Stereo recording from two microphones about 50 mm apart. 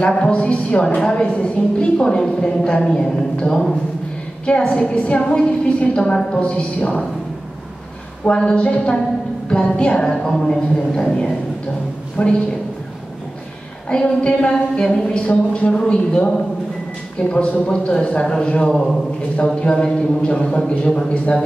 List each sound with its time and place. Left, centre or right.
0.0 s a woman's voice: centre
8.3 s a woman's voice: left
12.2 s a woman's voice: left
13.8 s a woman's voice: centre
18.7 s a man's voice: centre
19.5 s a woman's voice: centre